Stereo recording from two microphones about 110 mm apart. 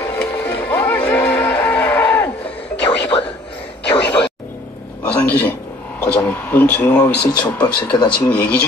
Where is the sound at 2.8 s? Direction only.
55° left (ahead or behind).